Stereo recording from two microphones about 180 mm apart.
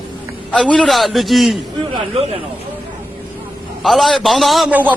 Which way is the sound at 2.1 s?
35° right (ahead or behind).